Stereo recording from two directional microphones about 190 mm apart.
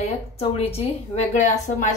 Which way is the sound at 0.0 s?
35° left (ahead or behind).